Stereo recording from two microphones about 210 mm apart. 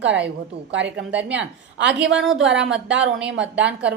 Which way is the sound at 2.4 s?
60° right (ahead or behind).